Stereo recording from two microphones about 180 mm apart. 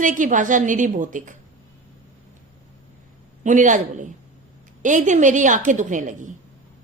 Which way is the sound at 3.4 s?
45° right (ahead or behind).